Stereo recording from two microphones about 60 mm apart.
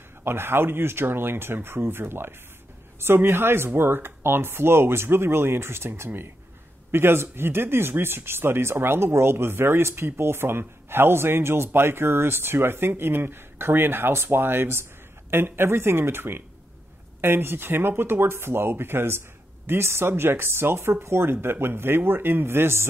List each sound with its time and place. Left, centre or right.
0.2 s speech: right